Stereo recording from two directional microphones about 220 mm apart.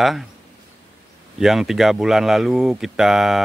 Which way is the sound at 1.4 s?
Centre (ahead or behind).